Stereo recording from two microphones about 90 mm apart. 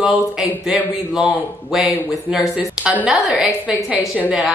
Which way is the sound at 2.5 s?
15° right (ahead or behind).